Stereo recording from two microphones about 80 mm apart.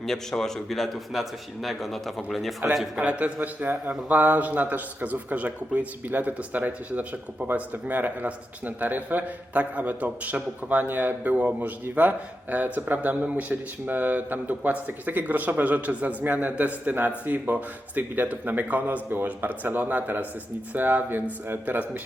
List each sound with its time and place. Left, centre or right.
0.0 s a man's voice: centre
2.9 s speech: centre